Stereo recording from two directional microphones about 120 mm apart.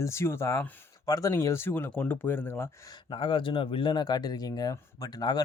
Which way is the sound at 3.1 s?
45° left (ahead or behind).